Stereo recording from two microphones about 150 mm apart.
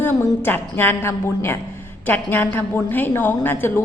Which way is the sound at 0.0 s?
15° left (ahead or behind).